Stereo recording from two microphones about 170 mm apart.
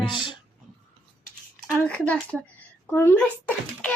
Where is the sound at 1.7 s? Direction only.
5° left (ahead or behind).